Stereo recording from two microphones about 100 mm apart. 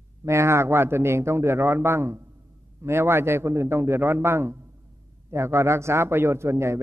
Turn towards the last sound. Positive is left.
turn(degrees=-30)  # may be behind; listen again after turning